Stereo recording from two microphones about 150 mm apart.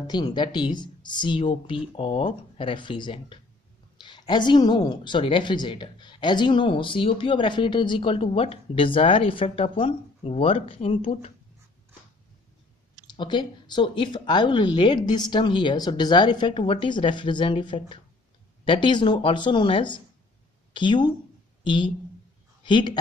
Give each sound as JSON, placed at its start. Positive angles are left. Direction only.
{"t": 0.0, "sound": "a woman's voice", "side_deg": 25}
{"t": 13.0, "sound": "a woman's voice", "side_deg": 30}